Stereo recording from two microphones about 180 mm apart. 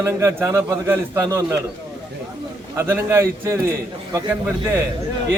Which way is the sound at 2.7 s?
15° right (ahead or behind).